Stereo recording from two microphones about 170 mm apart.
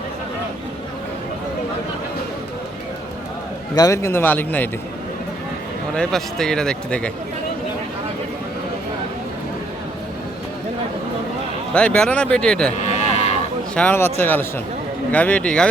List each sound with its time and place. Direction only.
3.8 s a man's voice: 20° left (ahead or behind)
5.9 s speech: 5° left (ahead or behind)
11.7 s speech: 5° left (ahead or behind)
12.7 s livestock: 40° left (ahead or behind)
13.7 s a man's voice: 10° left (ahead or behind)